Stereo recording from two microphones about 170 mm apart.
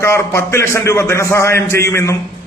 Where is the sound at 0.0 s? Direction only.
15° left (ahead or behind).